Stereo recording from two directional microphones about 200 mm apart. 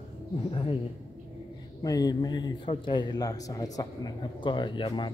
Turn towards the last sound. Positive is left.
turn(degrees=25)  # may be behind; listen again after turning